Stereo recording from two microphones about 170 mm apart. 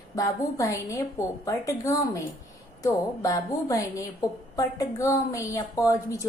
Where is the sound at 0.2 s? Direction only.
20° left (ahead or behind).